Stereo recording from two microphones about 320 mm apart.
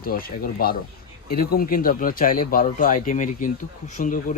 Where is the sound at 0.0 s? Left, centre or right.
Left.